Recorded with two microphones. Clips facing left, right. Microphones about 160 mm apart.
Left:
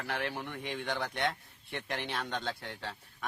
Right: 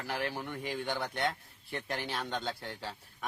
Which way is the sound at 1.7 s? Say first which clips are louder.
Right 1 dB; 35° right (ahead or behind).